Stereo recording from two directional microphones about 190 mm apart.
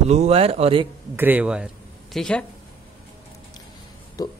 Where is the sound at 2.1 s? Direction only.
5° left (ahead or behind).